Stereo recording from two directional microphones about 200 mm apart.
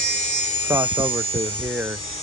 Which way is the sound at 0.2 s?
35° left (ahead or behind).